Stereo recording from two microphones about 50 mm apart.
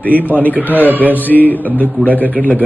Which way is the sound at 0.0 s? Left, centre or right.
Left.